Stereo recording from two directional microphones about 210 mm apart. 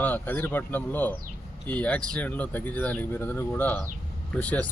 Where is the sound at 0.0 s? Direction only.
10° left (ahead or behind).